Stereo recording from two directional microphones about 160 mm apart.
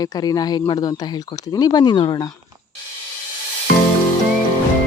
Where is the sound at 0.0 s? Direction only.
25° left (ahead or behind).